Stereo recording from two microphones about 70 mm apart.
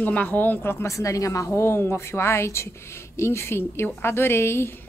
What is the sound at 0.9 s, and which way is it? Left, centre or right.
Speech, left.